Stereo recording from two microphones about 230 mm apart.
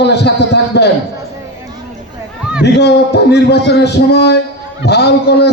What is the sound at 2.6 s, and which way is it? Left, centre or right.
Speech, left.